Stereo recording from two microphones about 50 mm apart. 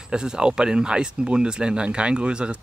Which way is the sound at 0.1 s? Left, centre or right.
Centre.